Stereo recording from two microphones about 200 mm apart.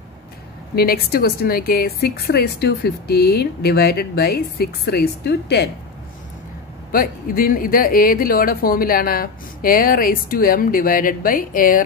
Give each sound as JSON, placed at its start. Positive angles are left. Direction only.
{"t": 0.7, "sound": "a woman's voice", "side_deg": 50}
{"t": 6.9, "sound": "a woman's voice", "side_deg": 45}